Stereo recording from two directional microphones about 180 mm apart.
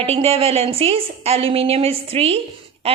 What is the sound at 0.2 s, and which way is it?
A woman's voice, 35° right (ahead or behind).